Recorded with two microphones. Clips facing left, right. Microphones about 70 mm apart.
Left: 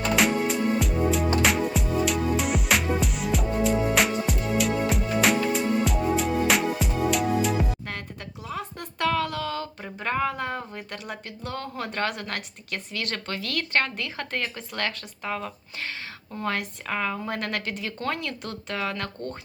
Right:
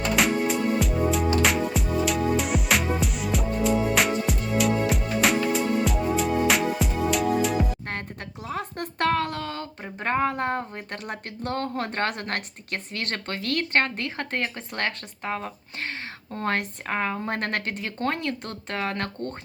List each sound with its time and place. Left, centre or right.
0.2 s music: centre
8.4 s a sound: right
10.0 s speech: right
16.3 s speech: right